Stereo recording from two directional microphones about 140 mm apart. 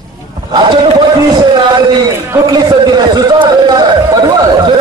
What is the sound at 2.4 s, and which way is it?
Speech, 30° right (ahead or behind).